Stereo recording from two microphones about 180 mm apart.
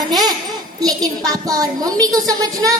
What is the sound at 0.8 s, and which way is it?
A woman's voice, 20° right (ahead or behind).